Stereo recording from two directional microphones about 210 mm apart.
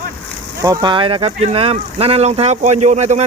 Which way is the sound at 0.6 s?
20° right (ahead or behind).